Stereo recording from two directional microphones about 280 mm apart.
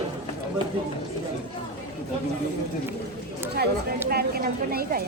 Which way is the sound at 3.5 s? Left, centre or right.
Right.